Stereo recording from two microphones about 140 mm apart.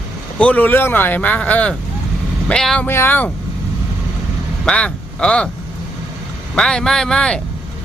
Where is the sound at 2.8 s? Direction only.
15° left (ahead or behind).